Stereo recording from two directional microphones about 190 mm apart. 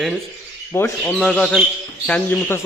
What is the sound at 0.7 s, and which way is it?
Speech, 10° left (ahead or behind).